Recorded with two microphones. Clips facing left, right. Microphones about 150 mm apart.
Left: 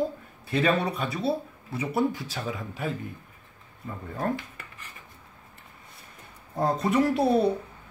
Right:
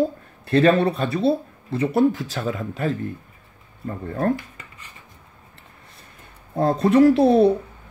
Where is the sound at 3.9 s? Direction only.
55° right (ahead or behind).